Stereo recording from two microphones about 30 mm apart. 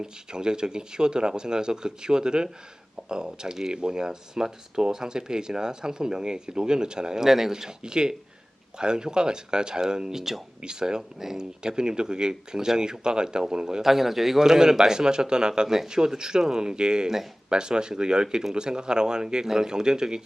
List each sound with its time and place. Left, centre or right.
0.0 s speech: right
7.2 s speech: centre
7.5 s speech: right
10.1 s speech: centre
10.6 s speech: right
13.8 s speech: centre; by 20.2 s right